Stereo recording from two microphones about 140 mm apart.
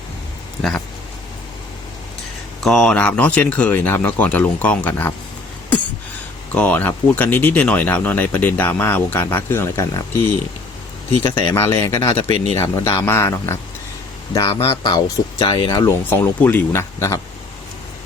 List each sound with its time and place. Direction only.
2.6 s speech: 5° left (ahead or behind)
6.5 s speech: 10° left (ahead or behind)
11.2 s speech: 20° left (ahead or behind)
12.1 s speech: 40° left (ahead or behind)
12.5 s speech: 20° left (ahead or behind)
14.5 s speech: 35° left (ahead or behind)
16.0 s speech: 15° left (ahead or behind)